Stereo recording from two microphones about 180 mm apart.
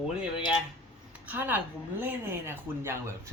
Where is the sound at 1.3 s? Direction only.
10° right (ahead or behind).